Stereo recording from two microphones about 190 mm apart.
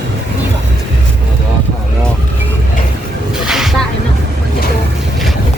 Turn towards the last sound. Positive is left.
turn(degrees=0)  # may be behind; listen again after turning